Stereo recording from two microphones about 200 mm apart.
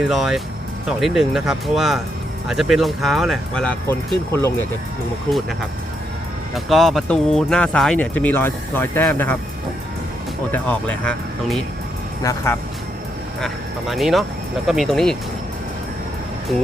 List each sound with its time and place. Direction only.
0.0 s speech: centre (ahead or behind)
6.5 s speech: centre (ahead or behind)
10.5 s speech: 5° left (ahead or behind)
12.2 s speech: 15° left (ahead or behind)
13.4 s speech: centre (ahead or behind)